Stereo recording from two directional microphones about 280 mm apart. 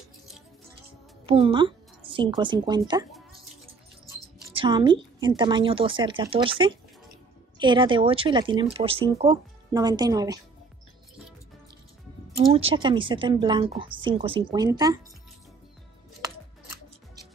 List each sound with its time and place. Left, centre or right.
1.2 s a woman's voice: centre
4.6 s speech: centre
12.5 s speech: centre